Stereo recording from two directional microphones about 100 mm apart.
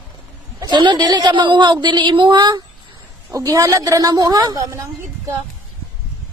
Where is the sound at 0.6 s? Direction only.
45° right (ahead or behind).